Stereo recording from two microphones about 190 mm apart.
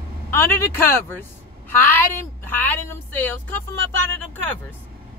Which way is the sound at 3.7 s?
80° right.